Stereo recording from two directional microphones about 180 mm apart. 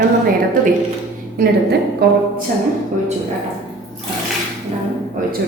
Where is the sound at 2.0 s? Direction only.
65° right (ahead or behind).